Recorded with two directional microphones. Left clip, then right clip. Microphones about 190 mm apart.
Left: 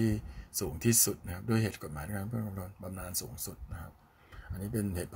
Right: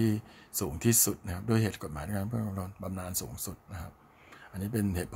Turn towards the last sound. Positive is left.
turn(degrees=-20)  # may be behind; listen again after turning